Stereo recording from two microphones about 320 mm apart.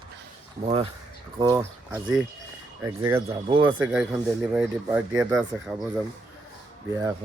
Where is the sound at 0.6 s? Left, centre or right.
Centre.